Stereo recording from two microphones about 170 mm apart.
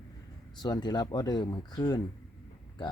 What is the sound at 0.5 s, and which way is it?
Speech, 25° left (ahead or behind).